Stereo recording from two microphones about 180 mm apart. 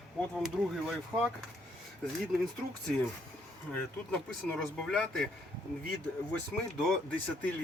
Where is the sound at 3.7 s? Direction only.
5° left (ahead or behind).